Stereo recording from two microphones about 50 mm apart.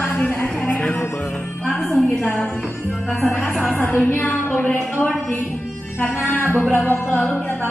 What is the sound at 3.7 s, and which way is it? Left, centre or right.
A woman's voice, left.